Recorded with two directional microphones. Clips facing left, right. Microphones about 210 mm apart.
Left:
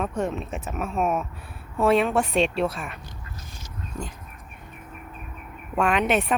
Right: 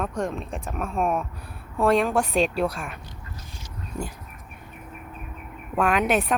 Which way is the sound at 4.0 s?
10° right (ahead or behind).